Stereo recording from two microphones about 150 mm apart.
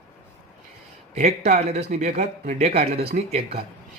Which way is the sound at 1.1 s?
50° right (ahead or behind).